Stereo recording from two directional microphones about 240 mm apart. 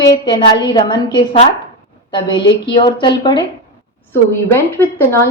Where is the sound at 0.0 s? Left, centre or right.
Centre.